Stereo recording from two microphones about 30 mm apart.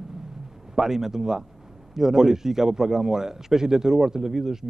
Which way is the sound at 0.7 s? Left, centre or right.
Centre.